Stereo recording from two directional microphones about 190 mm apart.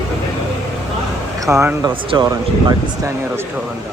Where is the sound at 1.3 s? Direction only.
15° right (ahead or behind).